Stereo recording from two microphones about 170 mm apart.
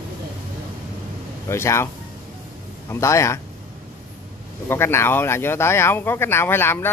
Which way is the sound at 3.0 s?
15° left (ahead or behind).